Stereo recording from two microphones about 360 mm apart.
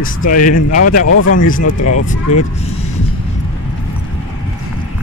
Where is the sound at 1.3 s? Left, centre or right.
Left.